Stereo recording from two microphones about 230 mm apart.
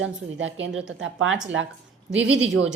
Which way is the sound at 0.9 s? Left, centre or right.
Right.